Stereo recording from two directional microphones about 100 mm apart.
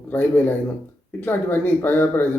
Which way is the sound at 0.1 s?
20° left (ahead or behind).